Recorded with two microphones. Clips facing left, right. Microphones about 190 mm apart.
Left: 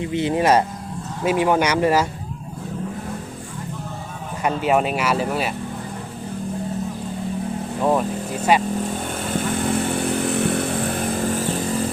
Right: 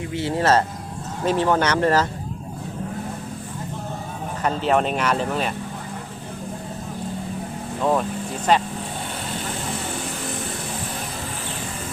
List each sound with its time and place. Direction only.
0.0 s speech: 20° left (ahead or behind)
4.4 s speech: 10° left (ahead or behind)
7.8 s speech: 10° left (ahead or behind)
10.0 s chainsaw: 60° left (ahead or behind)